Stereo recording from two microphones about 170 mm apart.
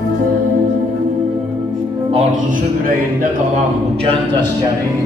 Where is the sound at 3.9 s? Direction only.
35° right (ahead or behind).